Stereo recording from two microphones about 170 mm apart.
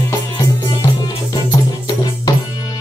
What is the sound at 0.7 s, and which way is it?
Music, 25° left (ahead or behind).